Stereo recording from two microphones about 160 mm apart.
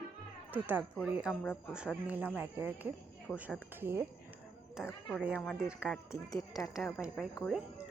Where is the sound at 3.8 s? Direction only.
15° right (ahead or behind).